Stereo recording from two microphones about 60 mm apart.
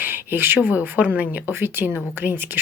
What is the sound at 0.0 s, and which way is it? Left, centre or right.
Speech, right.